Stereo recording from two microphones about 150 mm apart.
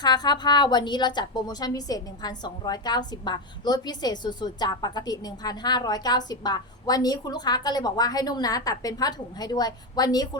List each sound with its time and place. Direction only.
0.0 s a woman's voice: 25° left (ahead or behind)